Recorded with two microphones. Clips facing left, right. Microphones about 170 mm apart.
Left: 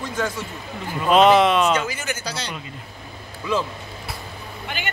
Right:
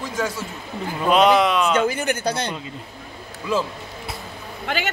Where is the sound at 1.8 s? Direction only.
55° right (ahead or behind).